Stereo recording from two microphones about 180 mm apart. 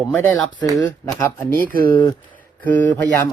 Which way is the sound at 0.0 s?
10° left (ahead or behind).